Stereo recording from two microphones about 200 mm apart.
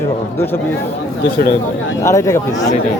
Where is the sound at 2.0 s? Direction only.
15° left (ahead or behind).